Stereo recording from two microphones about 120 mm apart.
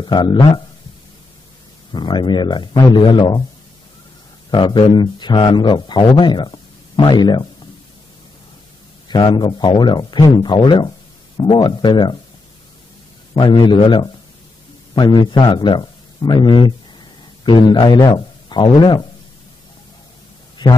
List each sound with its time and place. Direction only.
0.0 s speech: 40° left (ahead or behind)
1.9 s speech: 40° left (ahead or behind)
4.5 s speech: 40° left (ahead or behind)
9.1 s speech: 40° left (ahead or behind)
13.3 s a man's voice: 45° left (ahead or behind)
20.6 s a man's voice: 40° left (ahead or behind)